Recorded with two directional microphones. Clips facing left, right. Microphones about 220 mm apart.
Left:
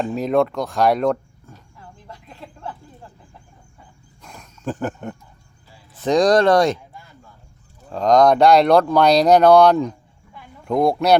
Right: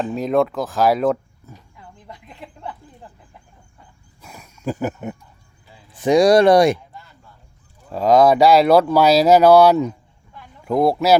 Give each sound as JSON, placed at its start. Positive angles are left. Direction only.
{"t": 0.0, "sound": "speech", "side_deg": 0}
{"t": 2.0, "sound": "speech", "side_deg": -15}
{"t": 4.2, "sound": "a sound", "side_deg": -10}
{"t": 5.9, "sound": "speech", "side_deg": -15}
{"t": 7.9, "sound": "speech", "side_deg": -5}